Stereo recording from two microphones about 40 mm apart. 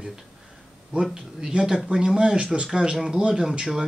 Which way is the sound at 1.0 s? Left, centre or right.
Centre.